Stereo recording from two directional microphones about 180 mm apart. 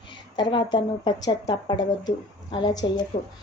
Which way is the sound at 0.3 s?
25° left (ahead or behind).